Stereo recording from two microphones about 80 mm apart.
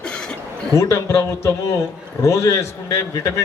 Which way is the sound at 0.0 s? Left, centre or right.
Centre.